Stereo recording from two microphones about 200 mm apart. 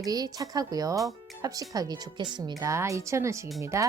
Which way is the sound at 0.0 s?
20° right (ahead or behind).